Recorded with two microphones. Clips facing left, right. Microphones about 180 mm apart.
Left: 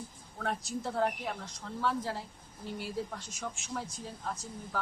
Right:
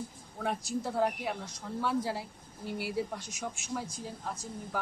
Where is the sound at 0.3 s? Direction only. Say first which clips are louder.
Right 2 dB; 10° right (ahead or behind).